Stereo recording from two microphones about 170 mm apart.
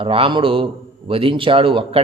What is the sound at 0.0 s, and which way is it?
Speech, 35° right (ahead or behind).